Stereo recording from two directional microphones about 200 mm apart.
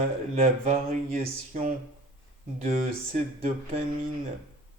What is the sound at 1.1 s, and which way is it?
Speech, 45° right (ahead or behind).